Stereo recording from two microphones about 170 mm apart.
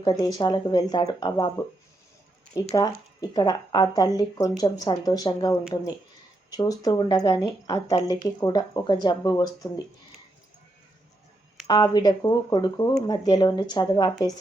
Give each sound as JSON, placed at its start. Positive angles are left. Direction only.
{"t": 0.0, "sound": "speech", "side_deg": 25}
{"t": 2.7, "sound": "speech", "side_deg": 20}
{"t": 11.7, "sound": "speech", "side_deg": 25}